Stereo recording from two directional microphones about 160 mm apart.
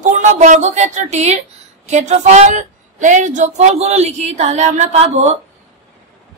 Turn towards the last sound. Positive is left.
turn(degrees=-45)  # may be behind; listen again after turning